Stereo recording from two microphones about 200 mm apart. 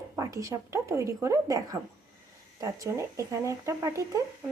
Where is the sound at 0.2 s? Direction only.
15° right (ahead or behind).